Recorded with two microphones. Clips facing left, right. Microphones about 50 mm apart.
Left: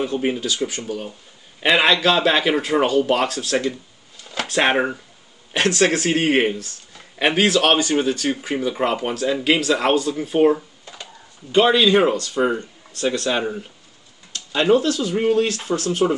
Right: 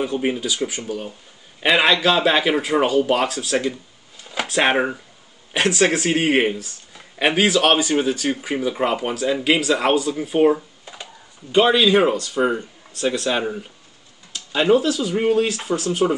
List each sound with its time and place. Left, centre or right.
0.0 s speech: centre
4.2 s a sound: centre
4.5 s speech: centre